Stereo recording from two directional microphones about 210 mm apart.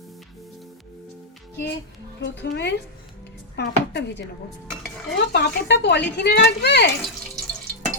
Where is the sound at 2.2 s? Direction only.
55° left (ahead or behind).